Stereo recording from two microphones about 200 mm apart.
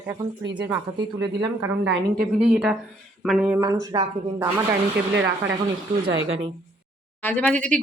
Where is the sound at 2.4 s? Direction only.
5° right (ahead or behind).